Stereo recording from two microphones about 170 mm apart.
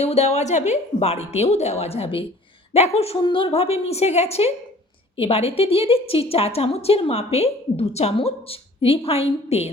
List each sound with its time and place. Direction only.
0.0 s a woman's voice: 40° left (ahead or behind)